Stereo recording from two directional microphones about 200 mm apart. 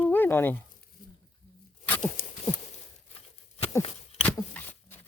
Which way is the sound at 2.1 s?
40° left (ahead or behind).